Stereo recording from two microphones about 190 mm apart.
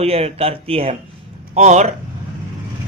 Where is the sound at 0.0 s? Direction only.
30° right (ahead or behind).